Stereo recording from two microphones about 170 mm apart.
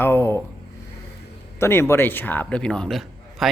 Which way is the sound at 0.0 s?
15° left (ahead or behind).